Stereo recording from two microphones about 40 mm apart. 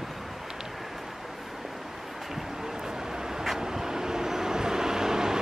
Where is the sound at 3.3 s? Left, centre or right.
Centre.